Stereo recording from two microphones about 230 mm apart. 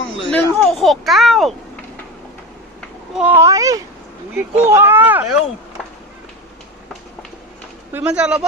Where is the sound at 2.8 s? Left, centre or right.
Centre.